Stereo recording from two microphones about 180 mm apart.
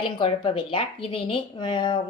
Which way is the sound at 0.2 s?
30° left (ahead or behind).